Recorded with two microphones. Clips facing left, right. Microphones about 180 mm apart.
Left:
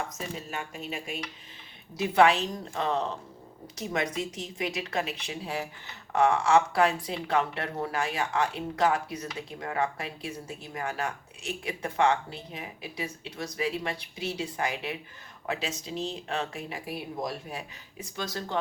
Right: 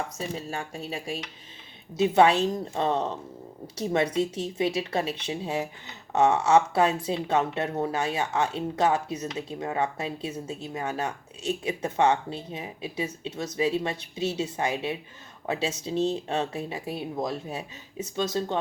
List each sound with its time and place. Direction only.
0.2 s speech: 30° right (ahead or behind)